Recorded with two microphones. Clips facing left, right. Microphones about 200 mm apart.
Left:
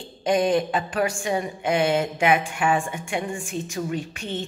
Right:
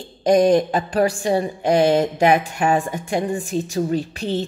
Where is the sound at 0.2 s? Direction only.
40° right (ahead or behind).